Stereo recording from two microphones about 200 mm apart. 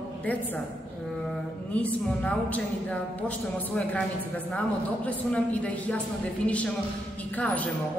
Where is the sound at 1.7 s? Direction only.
5° left (ahead or behind).